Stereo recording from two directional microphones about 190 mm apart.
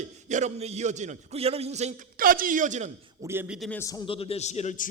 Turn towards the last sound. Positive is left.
turn(degrees=35)  # may be behind; listen again after turning